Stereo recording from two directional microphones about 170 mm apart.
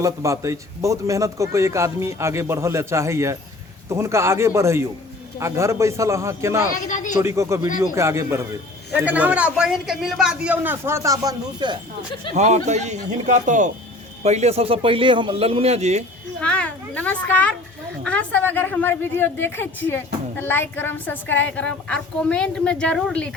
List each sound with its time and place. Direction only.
0.0 s a man's voice: 20° right (ahead or behind)
6.7 s speech: 45° left (ahead or behind)
7.2 s a man's voice: 15° right (ahead or behind)
12.3 s speech: 45° right (ahead or behind)
16.4 s a woman's voice: 5° left (ahead or behind)